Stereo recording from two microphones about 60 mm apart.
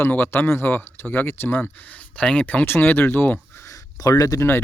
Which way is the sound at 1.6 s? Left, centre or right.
Left.